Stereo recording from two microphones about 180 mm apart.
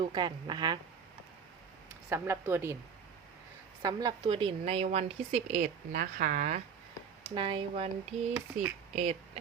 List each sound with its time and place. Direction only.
0.0 s speech: 25° right (ahead or behind)
2.0 s speech: 15° right (ahead or behind)
3.8 s a woman's voice: 25° right (ahead or behind); by 6.6 s 45° right (ahead or behind)
7.3 s speech: 25° right (ahead or behind)
8.5 s speech: 40° right (ahead or behind)